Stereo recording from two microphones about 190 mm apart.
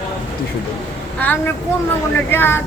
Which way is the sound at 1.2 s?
10° left (ahead or behind).